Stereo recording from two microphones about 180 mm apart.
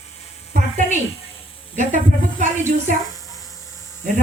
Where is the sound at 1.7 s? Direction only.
45° right (ahead or behind).